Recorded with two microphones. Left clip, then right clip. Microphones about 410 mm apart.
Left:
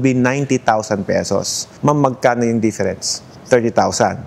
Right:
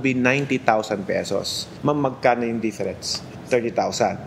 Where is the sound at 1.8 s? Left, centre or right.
Left.